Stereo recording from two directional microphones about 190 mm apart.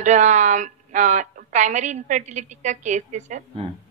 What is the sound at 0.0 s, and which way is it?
A woman's voice, 40° right (ahead or behind).